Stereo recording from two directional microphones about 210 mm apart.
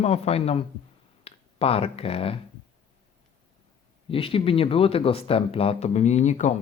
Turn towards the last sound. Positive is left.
turn(degrees=35)  # may be behind; listen again after turning